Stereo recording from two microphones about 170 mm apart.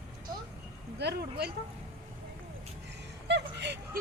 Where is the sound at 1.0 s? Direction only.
75° right (ahead or behind).